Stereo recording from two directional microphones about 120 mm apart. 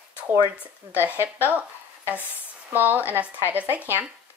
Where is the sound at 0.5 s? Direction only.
15° right (ahead or behind).